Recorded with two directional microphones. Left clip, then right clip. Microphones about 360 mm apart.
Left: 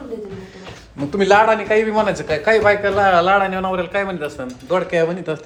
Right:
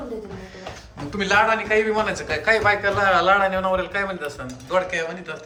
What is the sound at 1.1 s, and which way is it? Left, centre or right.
A man's voice, centre.